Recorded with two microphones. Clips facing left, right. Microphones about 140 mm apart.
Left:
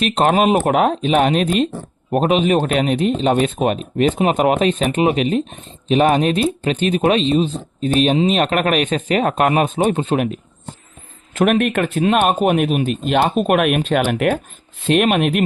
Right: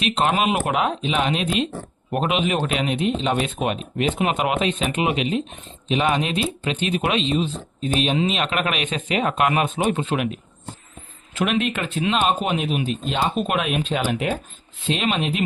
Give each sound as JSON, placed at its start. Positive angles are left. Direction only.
{"t": 0.0, "sound": "speech", "side_deg": 45}
{"t": 2.0, "sound": "speech", "side_deg": 35}
{"t": 11.3, "sound": "speech", "side_deg": 50}